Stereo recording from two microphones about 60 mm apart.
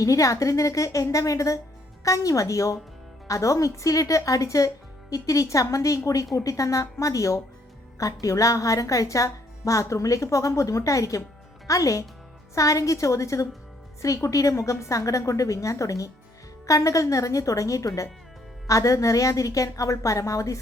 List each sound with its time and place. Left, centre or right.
0.0 s speech: left